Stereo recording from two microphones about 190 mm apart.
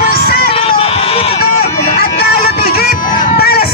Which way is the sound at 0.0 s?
55° left (ahead or behind).